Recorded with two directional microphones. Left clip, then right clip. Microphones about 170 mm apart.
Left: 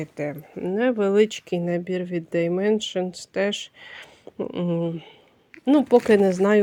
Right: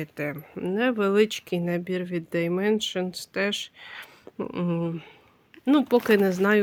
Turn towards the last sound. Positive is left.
turn(degrees=-15)  # may be behind; listen again after turning